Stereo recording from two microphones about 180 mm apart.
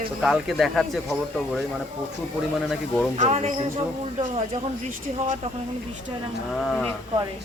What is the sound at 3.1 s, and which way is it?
Speech, 40° right (ahead or behind).